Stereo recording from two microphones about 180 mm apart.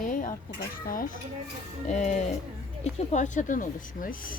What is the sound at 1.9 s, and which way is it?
A woman's voice, 40° left (ahead or behind).